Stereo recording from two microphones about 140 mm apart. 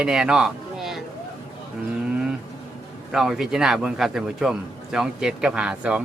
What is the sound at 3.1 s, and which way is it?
A man's voice, 5° right (ahead or behind).